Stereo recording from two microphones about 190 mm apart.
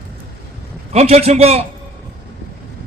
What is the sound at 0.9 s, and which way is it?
Speech, 35° right (ahead or behind).